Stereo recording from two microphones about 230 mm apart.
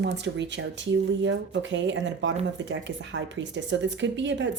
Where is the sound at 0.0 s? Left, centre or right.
Right.